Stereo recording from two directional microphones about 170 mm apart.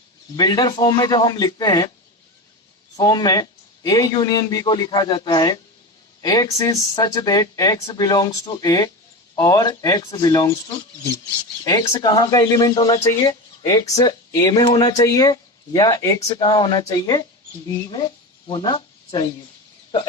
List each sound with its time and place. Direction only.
0.3 s speech: 25° left (ahead or behind)
2.9 s speech: 20° left (ahead or behind)
11.6 s speech: 20° left (ahead or behind)
18.4 s speech: 30° left (ahead or behind)